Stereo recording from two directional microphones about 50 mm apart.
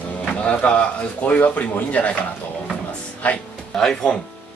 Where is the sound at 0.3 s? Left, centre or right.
Left.